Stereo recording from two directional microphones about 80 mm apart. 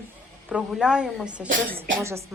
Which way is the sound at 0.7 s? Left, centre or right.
Centre.